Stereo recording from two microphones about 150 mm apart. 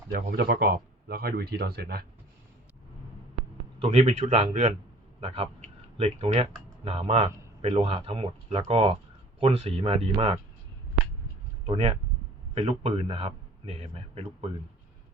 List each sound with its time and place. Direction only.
0.1 s speech: 90° right
3.8 s speech: 40° right (ahead or behind)
5.2 s a man's voice: 40° right (ahead or behind)
11.6 s a man's voice: 40° right (ahead or behind)